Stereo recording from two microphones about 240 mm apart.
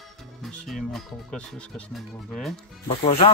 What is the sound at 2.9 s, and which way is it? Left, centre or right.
Speech, left.